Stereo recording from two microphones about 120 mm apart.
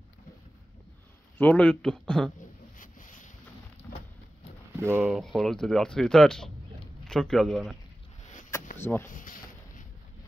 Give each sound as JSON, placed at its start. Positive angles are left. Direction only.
{"t": 1.4, "sound": "speech", "side_deg": 10}
{"t": 2.8, "sound": "boat", "side_deg": 90}
{"t": 5.0, "sound": "speech", "side_deg": -5}
{"t": 8.7, "sound": "speech", "side_deg": 20}